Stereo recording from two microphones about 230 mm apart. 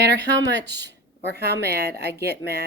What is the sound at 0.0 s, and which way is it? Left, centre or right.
Speech, right.